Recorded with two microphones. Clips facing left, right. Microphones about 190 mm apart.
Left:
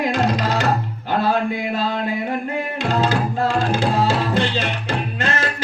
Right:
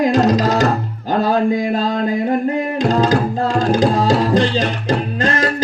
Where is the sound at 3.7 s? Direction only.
35° right (ahead or behind).